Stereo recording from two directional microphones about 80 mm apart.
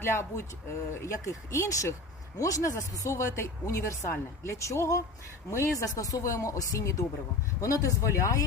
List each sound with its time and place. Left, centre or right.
0.0 s speech: left